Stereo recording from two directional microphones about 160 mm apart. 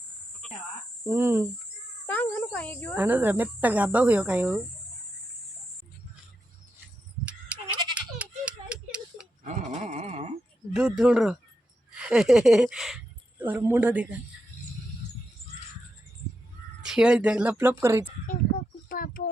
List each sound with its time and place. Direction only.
1.0 s speech: 15° right (ahead or behind)
2.0 s speech: 10° left (ahead or behind)
3.0 s speech: 10° right (ahead or behind)
7.3 s goat: 5° right (ahead or behind)
7.9 s a sound: 10° right (ahead or behind)
9.8 s a sound: 40° right (ahead or behind)
10.8 s speech: 5° right (ahead or behind)
13.4 s speech: 15° right (ahead or behind)
16.8 s speech: 5° right (ahead or behind)
18.3 s speech: 65° left (ahead or behind)